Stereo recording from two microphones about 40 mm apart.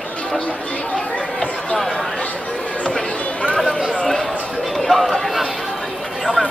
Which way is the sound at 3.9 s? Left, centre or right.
Centre.